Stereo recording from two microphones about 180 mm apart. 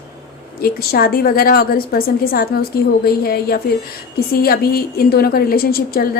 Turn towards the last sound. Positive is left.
turn(degrees=55)  # may be behind; listen again after turning